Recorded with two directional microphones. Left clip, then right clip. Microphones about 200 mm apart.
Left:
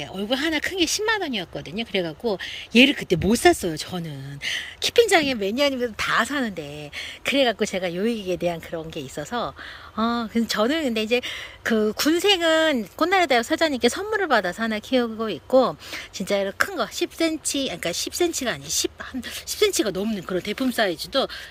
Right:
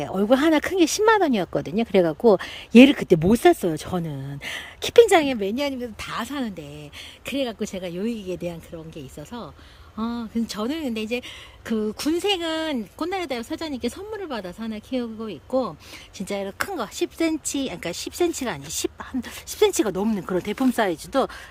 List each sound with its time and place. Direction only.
0.0 s speech: 20° right (ahead or behind)